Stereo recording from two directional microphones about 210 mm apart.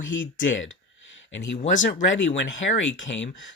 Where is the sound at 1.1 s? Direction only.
60° left (ahead or behind).